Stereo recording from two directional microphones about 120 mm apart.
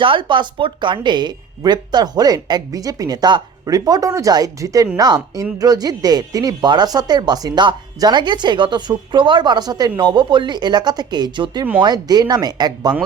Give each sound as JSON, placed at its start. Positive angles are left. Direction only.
{"t": 0.0, "sound": "speech", "side_deg": -45}